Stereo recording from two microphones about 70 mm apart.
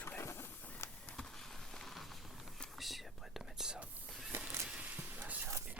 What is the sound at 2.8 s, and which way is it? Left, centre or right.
Whispering, centre.